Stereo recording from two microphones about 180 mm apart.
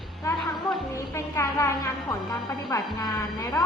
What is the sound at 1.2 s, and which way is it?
A woman's voice, 15° left (ahead or behind).